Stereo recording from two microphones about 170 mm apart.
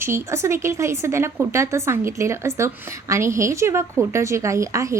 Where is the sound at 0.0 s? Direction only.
15° right (ahead or behind).